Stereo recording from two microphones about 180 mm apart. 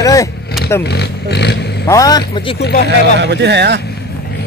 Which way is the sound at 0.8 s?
65° left (ahead or behind).